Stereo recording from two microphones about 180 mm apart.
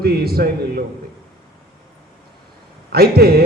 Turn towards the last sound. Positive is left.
turn(degrees=-60)  # may be behind; listen again after turning